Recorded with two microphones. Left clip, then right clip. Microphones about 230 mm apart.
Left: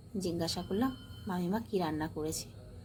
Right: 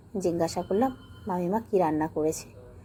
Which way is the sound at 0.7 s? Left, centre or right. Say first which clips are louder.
Right 8 dB; centre.